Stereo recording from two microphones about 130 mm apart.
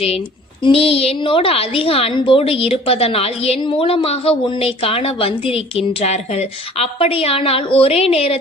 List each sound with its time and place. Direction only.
0.6 s a woman's voice: 45° left (ahead or behind)